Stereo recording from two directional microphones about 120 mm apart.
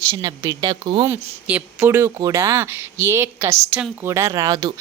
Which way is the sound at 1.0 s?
15° right (ahead or behind).